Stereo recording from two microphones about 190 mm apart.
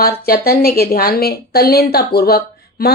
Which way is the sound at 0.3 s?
55° left (ahead or behind).